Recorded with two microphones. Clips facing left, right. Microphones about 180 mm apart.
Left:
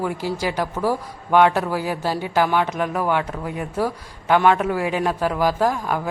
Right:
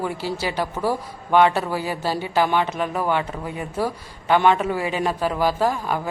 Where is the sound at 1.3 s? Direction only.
10° left (ahead or behind).